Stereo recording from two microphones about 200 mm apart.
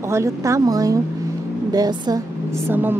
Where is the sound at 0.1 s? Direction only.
15° right (ahead or behind).